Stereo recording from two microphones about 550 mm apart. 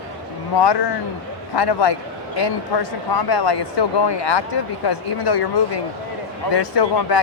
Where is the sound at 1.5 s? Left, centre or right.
Left.